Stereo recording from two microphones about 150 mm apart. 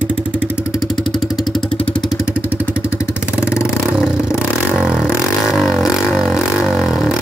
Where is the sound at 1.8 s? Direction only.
40° left (ahead or behind).